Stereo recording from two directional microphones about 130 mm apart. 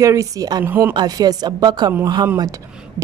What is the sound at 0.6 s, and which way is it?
Speech, 15° right (ahead or behind).